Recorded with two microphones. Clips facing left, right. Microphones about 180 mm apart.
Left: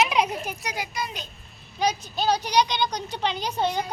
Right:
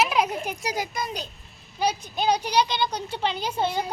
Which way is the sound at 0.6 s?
40° right (ahead or behind).